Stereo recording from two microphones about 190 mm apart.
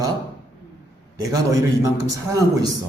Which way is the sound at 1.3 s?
15° right (ahead or behind).